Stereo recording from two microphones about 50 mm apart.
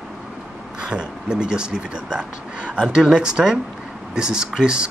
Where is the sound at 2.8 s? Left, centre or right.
Centre.